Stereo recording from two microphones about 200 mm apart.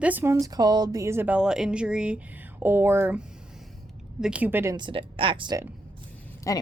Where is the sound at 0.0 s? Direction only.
10° right (ahead or behind).